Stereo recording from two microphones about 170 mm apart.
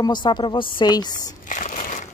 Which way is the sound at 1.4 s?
45° left (ahead or behind).